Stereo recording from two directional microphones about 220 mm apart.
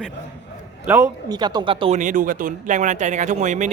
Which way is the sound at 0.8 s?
10° right (ahead or behind).